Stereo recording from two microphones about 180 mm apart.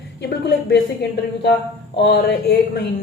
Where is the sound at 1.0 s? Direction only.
65° left (ahead or behind).